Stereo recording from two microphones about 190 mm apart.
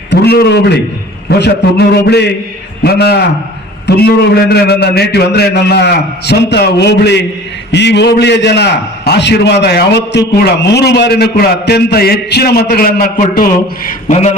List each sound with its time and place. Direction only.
0.1 s a man's voice: 60° left (ahead or behind)
2.0 s a man's voice: 60° left (ahead or behind)